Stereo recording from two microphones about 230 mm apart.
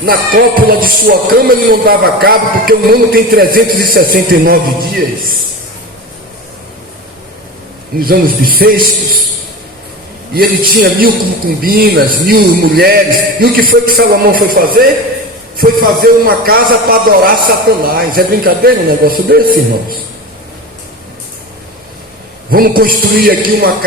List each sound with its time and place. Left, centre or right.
0.0 s music: right
7.9 s music: right
10.3 s music: right
22.4 s music: right